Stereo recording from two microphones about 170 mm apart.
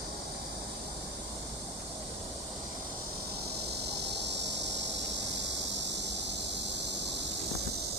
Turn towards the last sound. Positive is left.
turn(degrees=-90)